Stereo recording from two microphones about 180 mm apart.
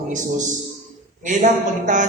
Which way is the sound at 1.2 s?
45° right (ahead or behind).